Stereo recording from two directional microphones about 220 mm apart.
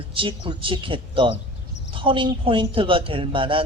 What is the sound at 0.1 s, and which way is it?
Speech, 25° right (ahead or behind).